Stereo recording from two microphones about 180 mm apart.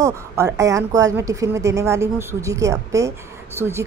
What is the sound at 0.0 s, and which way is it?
A woman's voice, 15° right (ahead or behind).